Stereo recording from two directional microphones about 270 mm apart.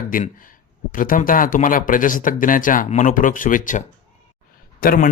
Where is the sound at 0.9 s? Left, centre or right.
Left.